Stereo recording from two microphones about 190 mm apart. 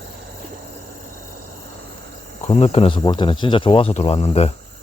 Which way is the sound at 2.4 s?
35° left (ahead or behind).